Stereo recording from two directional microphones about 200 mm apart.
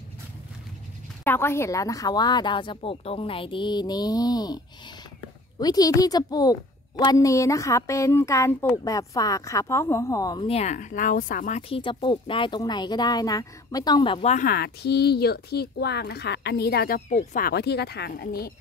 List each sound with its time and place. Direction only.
1.2 s speech: 10° left (ahead or behind)
5.6 s a woman's voice: 20° left (ahead or behind); by 11.6 s 40° left (ahead or behind)
11.7 s speech: 25° left (ahead or behind); by 18.5 s 50° left (ahead or behind)